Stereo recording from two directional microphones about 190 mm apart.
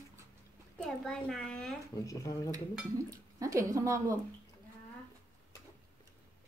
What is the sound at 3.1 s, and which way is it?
Speech, 15° right (ahead or behind).